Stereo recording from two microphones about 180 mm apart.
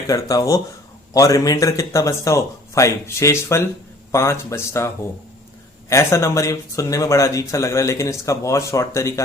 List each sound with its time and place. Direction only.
0.1 s speech: 20° left (ahead or behind)
5.9 s speech: 15° left (ahead or behind)